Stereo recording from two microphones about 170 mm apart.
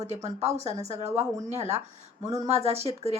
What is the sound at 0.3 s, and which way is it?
Speech, 40° right (ahead or behind).